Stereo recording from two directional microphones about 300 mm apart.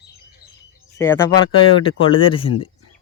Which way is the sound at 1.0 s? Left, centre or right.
Centre.